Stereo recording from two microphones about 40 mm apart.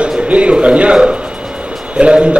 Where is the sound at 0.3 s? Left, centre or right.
Right.